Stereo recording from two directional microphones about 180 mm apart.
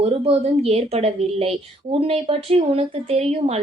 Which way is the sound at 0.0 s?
35° right (ahead or behind).